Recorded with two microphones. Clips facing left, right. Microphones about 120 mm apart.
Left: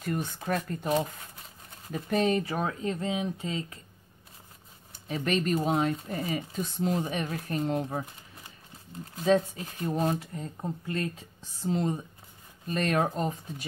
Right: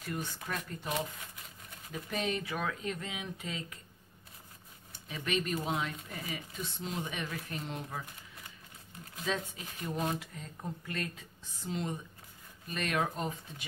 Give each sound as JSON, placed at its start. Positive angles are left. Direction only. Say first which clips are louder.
{"t": 0.0, "sound": "speech", "louder": "left 7 dB", "side_deg": 45}
{"t": 5.0, "sound": "speech", "louder": "left 6 dB", "side_deg": 40}
{"t": 9.1, "sound": "speech", "louder": "left 12 dB", "side_deg": 40}